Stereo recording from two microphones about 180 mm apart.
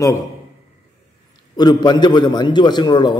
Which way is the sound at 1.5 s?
25° left (ahead or behind).